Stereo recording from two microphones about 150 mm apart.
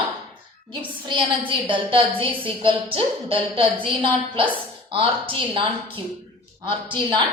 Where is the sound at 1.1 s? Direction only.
35° right (ahead or behind).